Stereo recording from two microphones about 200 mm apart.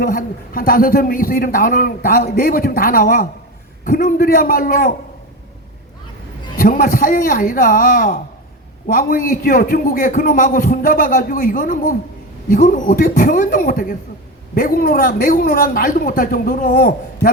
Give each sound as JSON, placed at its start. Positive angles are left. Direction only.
{"t": 0.0, "sound": "a man's voice", "side_deg": 45}
{"t": 6.6, "sound": "a man's voice", "side_deg": 45}